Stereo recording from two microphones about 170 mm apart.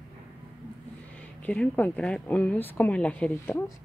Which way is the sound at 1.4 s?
10° left (ahead or behind).